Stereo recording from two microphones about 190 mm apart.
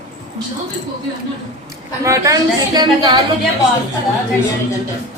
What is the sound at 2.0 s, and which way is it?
A woman's voice, 15° right (ahead or behind).